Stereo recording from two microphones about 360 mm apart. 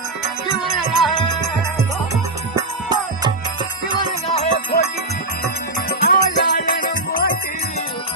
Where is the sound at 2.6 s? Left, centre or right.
Centre.